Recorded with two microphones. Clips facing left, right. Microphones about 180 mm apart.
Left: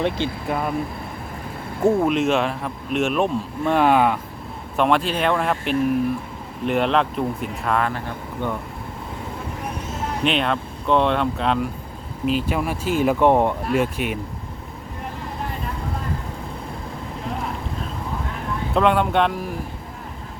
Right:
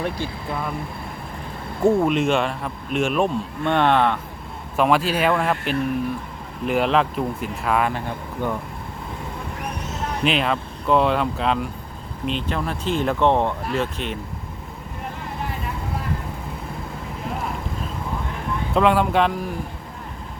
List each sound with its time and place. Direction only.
0.0 s speech: 20° left (ahead or behind)
1.8 s speech: centre (ahead or behind)
4.8 s speech: 5° right (ahead or behind)
7.9 s speech: 15° right (ahead or behind)
10.2 s speech: centre (ahead or behind)
18.7 s speech: centre (ahead or behind)